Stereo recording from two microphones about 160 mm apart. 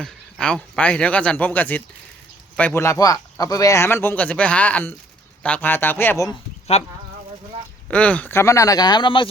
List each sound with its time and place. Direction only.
0.0 s speech: 5° left (ahead or behind)
6.7 s speech: 40° left (ahead or behind)
7.9 s speech: 10° left (ahead or behind); by 9.3 s 30° left (ahead or behind)